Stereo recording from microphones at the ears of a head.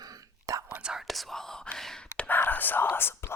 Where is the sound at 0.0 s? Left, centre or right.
Right.